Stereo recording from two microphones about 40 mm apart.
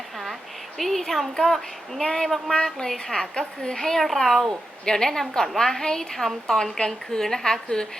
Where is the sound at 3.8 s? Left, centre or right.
Centre.